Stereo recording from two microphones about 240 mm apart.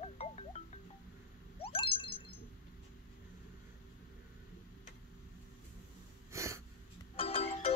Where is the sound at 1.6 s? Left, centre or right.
Left.